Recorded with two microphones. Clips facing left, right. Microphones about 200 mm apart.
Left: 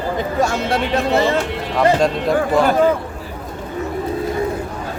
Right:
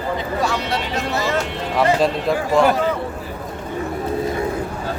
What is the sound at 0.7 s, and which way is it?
Speech, 55° left (ahead or behind).